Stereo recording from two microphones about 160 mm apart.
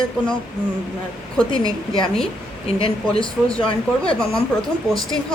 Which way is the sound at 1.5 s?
30° left (ahead or behind).